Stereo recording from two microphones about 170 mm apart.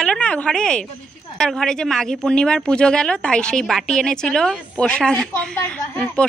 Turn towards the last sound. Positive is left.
turn(degrees=10)  # may be behind; listen again after turning